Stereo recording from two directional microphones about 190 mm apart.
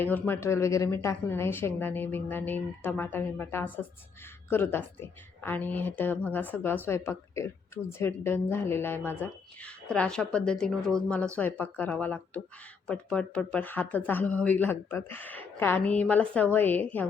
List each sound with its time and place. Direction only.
0.0 s a woman's voice: 10° left (ahead or behind)